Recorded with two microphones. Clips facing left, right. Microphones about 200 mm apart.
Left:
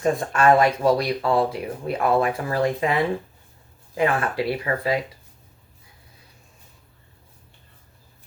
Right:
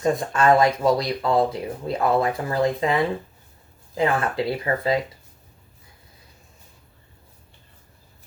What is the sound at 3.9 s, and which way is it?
Speech, 25° right (ahead or behind).